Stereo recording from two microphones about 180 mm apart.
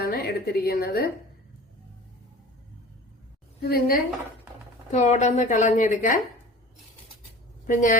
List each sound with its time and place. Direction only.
0.0 s a woman's voice: 55° left (ahead or behind)
3.6 s a woman's voice: 55° left (ahead or behind)
4.9 s a woman's voice: 40° left (ahead or behind)
7.7 s a woman's voice: 45° left (ahead or behind)